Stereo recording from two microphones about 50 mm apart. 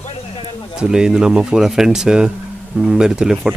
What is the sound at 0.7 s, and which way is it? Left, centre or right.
Speech, centre.